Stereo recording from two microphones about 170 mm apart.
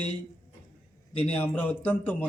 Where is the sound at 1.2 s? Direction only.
10° left (ahead or behind).